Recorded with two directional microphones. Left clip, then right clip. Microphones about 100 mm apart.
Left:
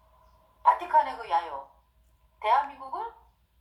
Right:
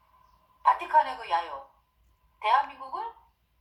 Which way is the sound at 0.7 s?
25° left (ahead or behind).